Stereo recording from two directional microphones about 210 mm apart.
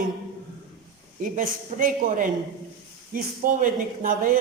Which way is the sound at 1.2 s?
40° right (ahead or behind).